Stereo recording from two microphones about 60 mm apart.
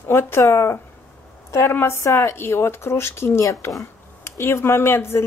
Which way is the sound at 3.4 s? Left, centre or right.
Left.